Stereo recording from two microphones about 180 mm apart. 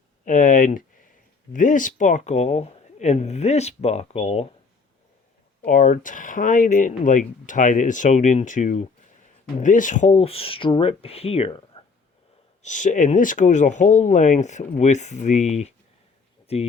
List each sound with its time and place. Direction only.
0.3 s speech: 45° left (ahead or behind)
5.6 s speech: 45° left (ahead or behind)
12.6 s speech: 45° left (ahead or behind)